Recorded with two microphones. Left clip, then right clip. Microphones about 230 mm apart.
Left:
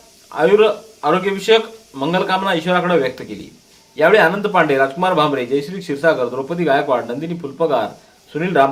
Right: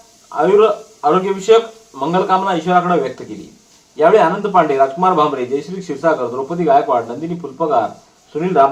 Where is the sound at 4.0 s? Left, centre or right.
Left.